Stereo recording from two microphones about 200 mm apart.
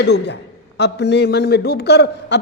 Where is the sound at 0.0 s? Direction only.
60° left (ahead or behind).